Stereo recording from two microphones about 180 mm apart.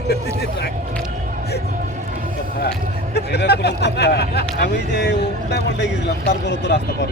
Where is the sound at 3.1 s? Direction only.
65° left (ahead or behind).